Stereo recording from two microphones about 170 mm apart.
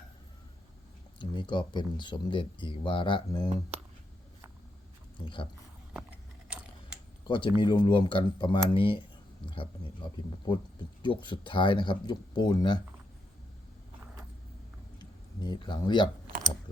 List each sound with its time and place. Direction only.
1.2 s speech: 30° left (ahead or behind)
5.2 s speech: 30° left (ahead or behind)
7.3 s speech: 30° left (ahead or behind)
11.0 s speech: 30° left (ahead or behind)
15.4 s speech: 25° left (ahead or behind)